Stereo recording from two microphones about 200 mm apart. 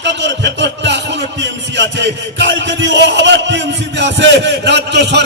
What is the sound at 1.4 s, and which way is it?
Speech, 60° right (ahead or behind).